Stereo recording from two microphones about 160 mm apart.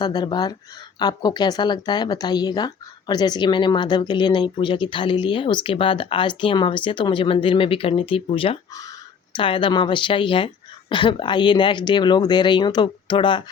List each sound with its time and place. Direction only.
0.0 s speech: 25° left (ahead or behind)